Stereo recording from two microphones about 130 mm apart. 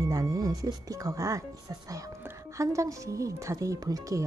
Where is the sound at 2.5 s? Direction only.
25° right (ahead or behind).